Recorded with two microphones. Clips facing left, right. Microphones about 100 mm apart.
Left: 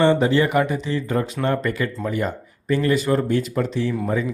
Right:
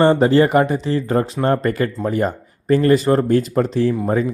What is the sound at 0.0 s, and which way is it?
A man's voice, 40° right (ahead or behind).